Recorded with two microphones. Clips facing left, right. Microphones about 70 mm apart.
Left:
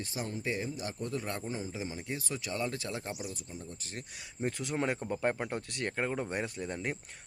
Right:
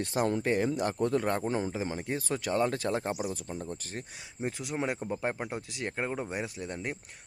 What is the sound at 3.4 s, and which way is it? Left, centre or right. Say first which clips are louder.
Speech: right 7 dB; right.